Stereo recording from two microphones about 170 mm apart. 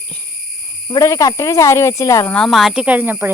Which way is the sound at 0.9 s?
20° left (ahead or behind).